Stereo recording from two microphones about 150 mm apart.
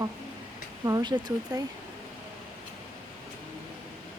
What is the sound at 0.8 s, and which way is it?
Speech, 25° right (ahead or behind).